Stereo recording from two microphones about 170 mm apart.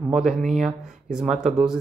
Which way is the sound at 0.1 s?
Centre (ahead or behind).